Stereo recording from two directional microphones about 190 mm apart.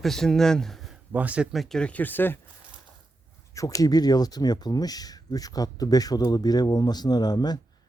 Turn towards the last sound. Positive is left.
turn(degrees=20)  # may be behind; listen again after turning